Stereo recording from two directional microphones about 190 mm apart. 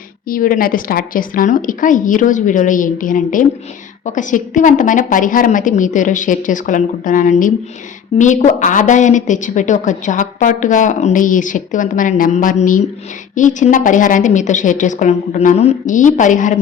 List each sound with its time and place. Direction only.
0.3 s a woman's voice: 45° left (ahead or behind)